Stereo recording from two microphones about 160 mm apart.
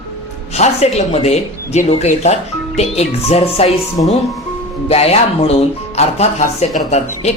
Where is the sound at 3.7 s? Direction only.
Centre (ahead or behind).